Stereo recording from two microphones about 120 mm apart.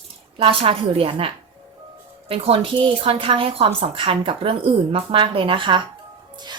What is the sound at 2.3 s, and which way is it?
Speech, 50° right (ahead or behind).